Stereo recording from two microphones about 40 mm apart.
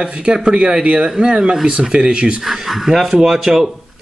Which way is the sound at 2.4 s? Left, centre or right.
Centre.